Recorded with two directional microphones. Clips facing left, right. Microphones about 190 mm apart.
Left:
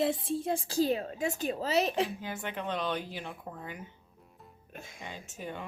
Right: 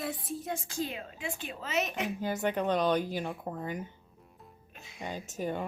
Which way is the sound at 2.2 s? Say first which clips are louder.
Right 7 dB; 40° right (ahead or behind).